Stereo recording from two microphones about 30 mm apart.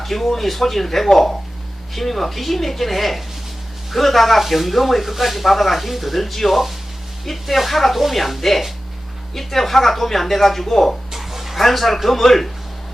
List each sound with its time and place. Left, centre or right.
0.0 s speech: centre
11.1 s a sound: centre
11.6 s speech: centre